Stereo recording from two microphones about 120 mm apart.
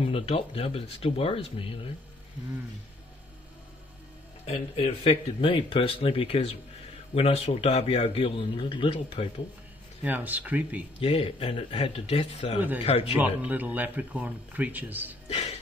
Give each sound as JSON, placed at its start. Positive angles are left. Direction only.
{"t": 0.0, "sound": "a man's voice", "side_deg": 50}
{"t": 4.5, "sound": "a man's voice", "side_deg": 55}
{"t": 10.0, "sound": "speech", "side_deg": -15}
{"t": 11.0, "sound": "a man's voice", "side_deg": 50}
{"t": 12.5, "sound": "speech", "side_deg": -15}
{"t": 12.8, "sound": "speech", "side_deg": 55}
{"t": 13.1, "sound": "speech", "side_deg": -15}
{"t": 15.2, "sound": "speech", "side_deg": 60}